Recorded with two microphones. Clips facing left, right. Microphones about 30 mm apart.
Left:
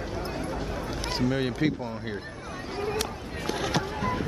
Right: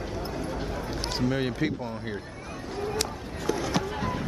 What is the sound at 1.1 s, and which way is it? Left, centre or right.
Speech, centre.